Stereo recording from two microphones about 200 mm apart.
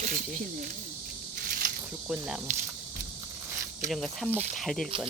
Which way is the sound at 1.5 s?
45° right (ahead or behind).